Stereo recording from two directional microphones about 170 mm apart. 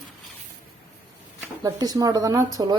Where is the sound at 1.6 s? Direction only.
20° right (ahead or behind).